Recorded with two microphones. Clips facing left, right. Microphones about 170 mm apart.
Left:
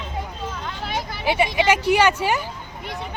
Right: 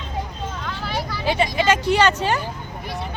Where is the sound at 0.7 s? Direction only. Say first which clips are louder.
Right 3 dB; 20° left (ahead or behind).